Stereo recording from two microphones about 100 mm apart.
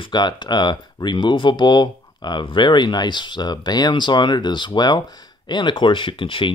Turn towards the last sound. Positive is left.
turn(degrees=60)  # may be behind; listen again after turning